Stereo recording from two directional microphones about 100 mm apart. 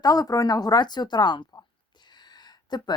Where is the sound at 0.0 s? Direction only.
40° left (ahead or behind).